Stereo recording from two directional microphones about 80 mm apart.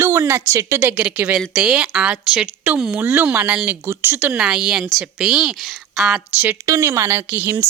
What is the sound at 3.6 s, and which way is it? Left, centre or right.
Speech, right.